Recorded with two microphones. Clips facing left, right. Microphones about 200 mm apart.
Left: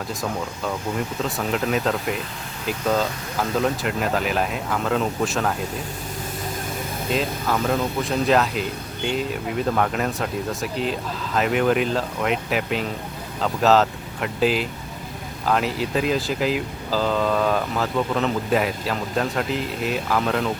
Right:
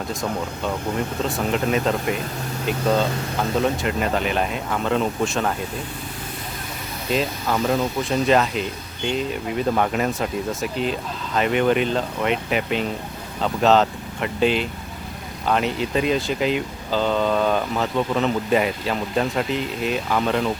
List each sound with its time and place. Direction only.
1.5 s speech: centre (ahead or behind)
7.1 s speech: centre (ahead or behind)